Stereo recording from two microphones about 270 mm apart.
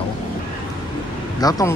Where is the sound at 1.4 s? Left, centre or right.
Centre.